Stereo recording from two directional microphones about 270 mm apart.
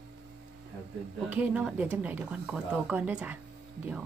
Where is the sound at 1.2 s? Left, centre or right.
Centre.